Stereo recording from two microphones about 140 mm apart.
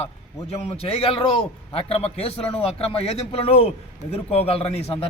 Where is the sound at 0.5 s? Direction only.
50° left (ahead or behind).